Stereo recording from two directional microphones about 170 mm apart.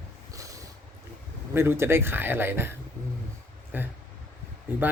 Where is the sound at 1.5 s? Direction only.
15° right (ahead or behind).